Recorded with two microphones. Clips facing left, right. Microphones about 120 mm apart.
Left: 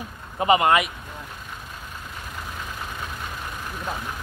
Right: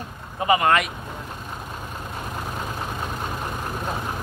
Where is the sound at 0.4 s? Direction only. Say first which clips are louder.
Left 1 dB; 20° left (ahead or behind).